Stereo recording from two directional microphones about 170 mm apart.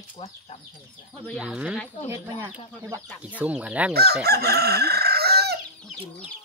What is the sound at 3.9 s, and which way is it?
Chicken, 70° right (ahead or behind).